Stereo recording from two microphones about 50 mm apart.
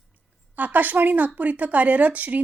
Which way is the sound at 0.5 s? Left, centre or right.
Right.